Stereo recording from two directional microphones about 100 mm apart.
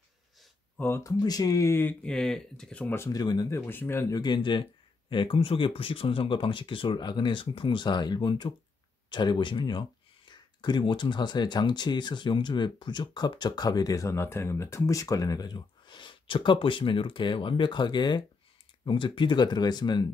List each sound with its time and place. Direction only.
0.7 s speech: 25° left (ahead or behind)
1.2 s speech: 40° left (ahead or behind); by 2.0 s 25° left (ahead or behind)
2.0 s speech: 5° left (ahead or behind)
3.1 s speech: 40° left (ahead or behind)
3.5 s speech: 20° left (ahead or behind)
4.1 s speech: 45° left (ahead or behind)